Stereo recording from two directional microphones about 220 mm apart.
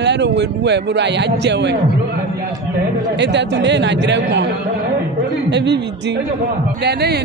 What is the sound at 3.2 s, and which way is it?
Speech, 50° right (ahead or behind).